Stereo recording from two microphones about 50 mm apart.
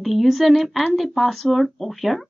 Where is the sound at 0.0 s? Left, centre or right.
Centre.